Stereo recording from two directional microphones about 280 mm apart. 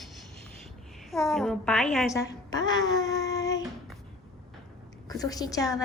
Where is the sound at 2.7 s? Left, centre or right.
Centre.